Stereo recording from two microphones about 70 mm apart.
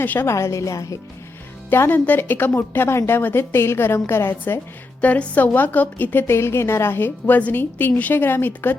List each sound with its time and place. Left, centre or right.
0.0 s a woman's voice: left
0.3 s a woman's voice: left
1.7 s a woman's voice: left
4.9 s a woman's voice: left
6.2 s a woman's voice: left